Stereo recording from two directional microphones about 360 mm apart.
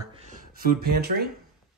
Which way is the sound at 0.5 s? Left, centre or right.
Right.